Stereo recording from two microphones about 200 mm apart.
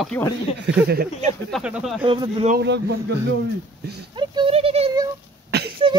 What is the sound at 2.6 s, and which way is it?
Speech, 60° right (ahead or behind).